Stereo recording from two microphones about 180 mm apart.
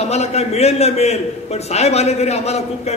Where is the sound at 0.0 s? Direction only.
35° left (ahead or behind).